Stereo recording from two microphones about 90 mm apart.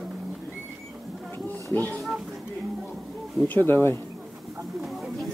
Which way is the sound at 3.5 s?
25° left (ahead or behind).